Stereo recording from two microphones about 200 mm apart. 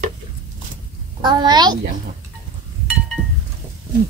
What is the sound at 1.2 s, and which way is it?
Speech, 20° right (ahead or behind).